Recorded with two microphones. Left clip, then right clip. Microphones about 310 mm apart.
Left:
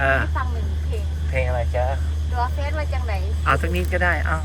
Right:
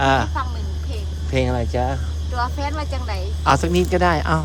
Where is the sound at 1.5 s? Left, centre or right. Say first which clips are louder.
Right 1 dB; right.